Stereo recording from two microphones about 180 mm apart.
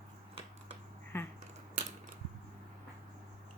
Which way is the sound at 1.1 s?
15° left (ahead or behind).